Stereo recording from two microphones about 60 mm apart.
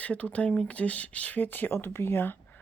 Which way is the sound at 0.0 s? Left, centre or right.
Left.